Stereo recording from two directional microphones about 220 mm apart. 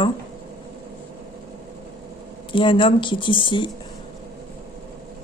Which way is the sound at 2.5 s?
25° left (ahead or behind).